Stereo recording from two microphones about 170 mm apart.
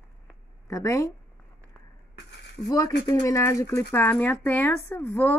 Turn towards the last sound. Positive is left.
turn(degrees=10)  # may be behind; listen again after turning